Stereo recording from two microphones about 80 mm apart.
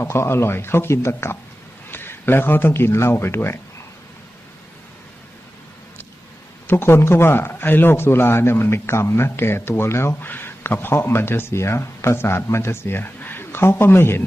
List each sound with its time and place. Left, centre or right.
0.0 s speech: left
6.7 s a man's voice: left